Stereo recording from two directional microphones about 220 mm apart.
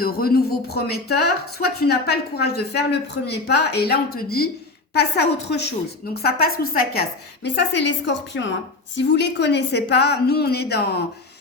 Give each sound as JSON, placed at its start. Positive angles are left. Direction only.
{"t": 0.0, "sound": "a woman's voice", "side_deg": 45}